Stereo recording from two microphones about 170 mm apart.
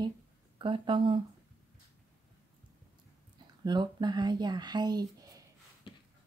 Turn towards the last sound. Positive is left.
turn(degrees=-20)  # may be behind; listen again after turning